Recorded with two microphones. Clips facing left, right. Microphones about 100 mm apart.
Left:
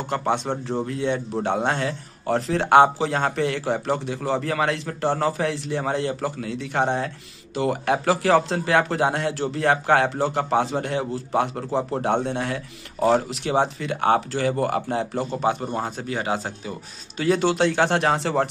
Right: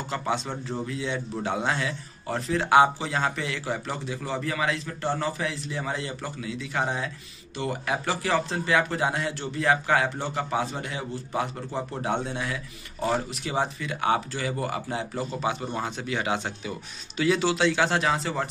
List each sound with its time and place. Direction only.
0.1 s speech: 50° left (ahead or behind)
2.2 s speech: 70° left (ahead or behind)
7.5 s speech: 75° left (ahead or behind); by 16.7 s 40° left (ahead or behind)
17.2 s speech: 50° left (ahead or behind); by 18.5 s 70° left (ahead or behind)